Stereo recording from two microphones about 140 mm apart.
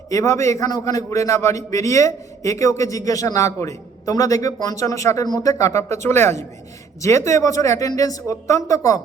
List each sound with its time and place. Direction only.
0.1 s a man's voice: 20° left (ahead or behind)